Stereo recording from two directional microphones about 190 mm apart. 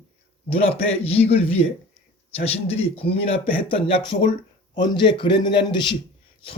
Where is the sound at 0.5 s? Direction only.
30° left (ahead or behind).